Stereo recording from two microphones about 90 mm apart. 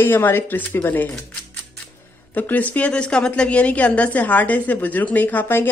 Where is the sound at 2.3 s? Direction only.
20° left (ahead or behind).